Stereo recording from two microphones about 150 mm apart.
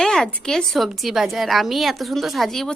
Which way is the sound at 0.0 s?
5° left (ahead or behind).